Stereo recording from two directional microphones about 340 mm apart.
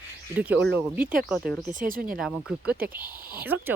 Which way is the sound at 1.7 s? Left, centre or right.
Right.